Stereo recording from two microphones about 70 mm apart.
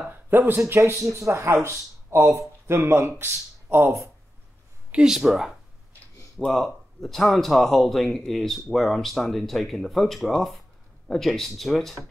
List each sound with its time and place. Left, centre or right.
0.1 s speech: right
4.9 s speech: centre